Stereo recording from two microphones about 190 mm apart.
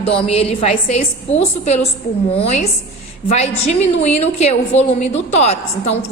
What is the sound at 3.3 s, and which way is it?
A woman's voice, 35° left (ahead or behind).